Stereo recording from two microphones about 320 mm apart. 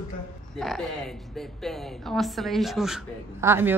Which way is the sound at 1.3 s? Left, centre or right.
Centre.